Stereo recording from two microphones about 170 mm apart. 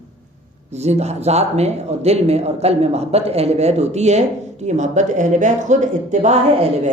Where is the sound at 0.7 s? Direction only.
40° right (ahead or behind).